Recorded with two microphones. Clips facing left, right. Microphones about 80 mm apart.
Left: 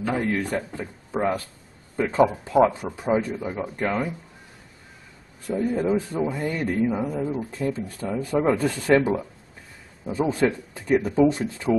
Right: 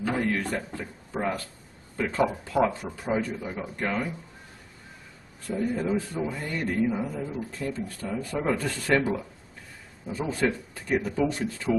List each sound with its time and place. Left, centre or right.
0.0 s a man's voice: centre
0.7 s a man's voice: centre
3.7 s a man's voice: centre
5.6 s a man's voice: centre
10.0 s speech: centre